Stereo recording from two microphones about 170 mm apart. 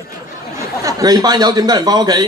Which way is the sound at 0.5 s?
20° right (ahead or behind).